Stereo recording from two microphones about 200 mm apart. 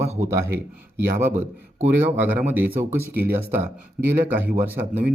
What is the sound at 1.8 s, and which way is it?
Speech, 10° right (ahead or behind).